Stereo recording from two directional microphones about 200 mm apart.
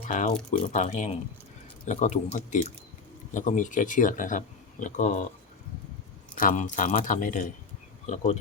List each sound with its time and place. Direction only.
0.1 s speech: 40° left (ahead or behind)
6.3 s speech: 40° left (ahead or behind)